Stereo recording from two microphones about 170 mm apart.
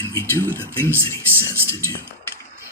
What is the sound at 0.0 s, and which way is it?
Speech, 15° left (ahead or behind).